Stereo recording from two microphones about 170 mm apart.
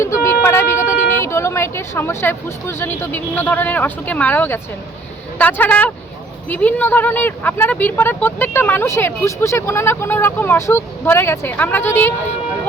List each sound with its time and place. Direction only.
0.0 s speech: 15° left (ahead or behind)